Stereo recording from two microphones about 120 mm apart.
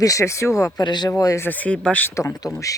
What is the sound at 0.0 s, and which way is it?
Speech, 25° left (ahead or behind).